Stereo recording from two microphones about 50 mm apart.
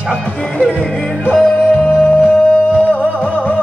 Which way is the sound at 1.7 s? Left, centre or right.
Left.